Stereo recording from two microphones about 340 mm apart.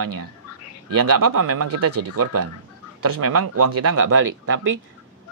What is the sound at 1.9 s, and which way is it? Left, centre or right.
Speech, right.